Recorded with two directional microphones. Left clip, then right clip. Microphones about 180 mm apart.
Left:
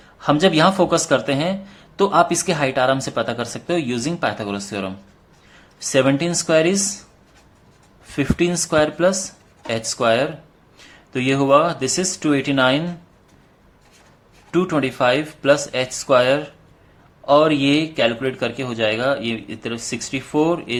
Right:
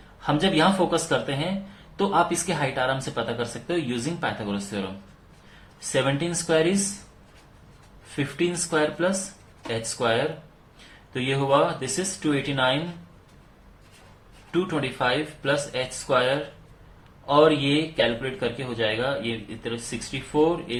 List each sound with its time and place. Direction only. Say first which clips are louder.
0.2 s speech: left 6 dB; 55° left (ahead or behind)
5.9 s speech: left 7 dB; 55° left (ahead or behind)
8.1 s speech: left 6 dB; 50° left (ahead or behind)
14.5 s speech: left 7 dB; 50° left (ahead or behind)